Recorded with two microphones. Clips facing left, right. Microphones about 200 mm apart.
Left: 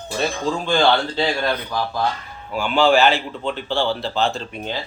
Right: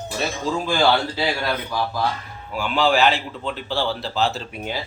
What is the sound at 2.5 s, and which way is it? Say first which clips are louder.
A man's voice: left 3 dB; centre (ahead or behind).